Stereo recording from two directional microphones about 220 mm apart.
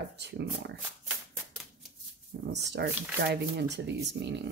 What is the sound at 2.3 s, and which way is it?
Speech, 50° right (ahead or behind).